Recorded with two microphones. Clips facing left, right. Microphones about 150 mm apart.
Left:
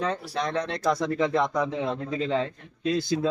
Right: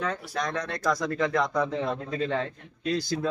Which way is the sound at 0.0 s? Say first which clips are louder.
Left 2 dB; 30° left (ahead or behind).